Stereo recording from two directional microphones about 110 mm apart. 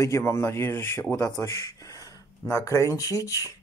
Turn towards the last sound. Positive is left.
turn(degrees=30)  # may be behind; listen again after turning